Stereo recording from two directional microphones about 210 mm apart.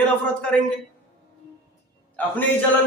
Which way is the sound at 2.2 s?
10° left (ahead or behind).